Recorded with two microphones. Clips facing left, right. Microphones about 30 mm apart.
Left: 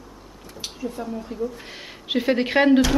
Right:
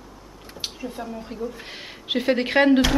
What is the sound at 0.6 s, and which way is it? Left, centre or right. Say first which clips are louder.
Speech: left 1 dB; right.